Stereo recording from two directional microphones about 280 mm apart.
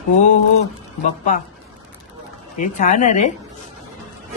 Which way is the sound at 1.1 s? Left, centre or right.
Left.